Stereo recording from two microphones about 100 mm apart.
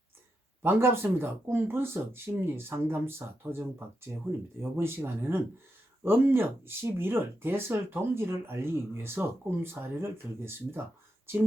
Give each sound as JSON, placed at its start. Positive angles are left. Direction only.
{"t": 0.6, "sound": "speech", "side_deg": -20}